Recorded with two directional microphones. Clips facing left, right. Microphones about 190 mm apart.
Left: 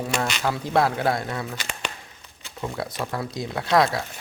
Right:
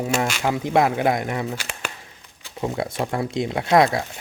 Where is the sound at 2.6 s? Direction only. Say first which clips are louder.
Right 5 dB; 25° right (ahead or behind).